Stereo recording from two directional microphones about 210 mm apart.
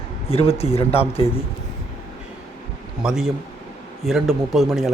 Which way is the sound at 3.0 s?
Centre (ahead or behind).